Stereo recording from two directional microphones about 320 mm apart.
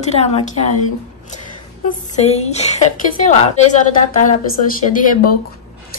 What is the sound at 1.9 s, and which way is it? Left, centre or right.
A woman's voice, left.